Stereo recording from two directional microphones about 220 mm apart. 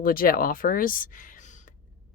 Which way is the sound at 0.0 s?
40° left (ahead or behind).